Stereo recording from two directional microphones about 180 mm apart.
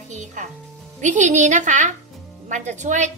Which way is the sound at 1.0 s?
40° right (ahead or behind).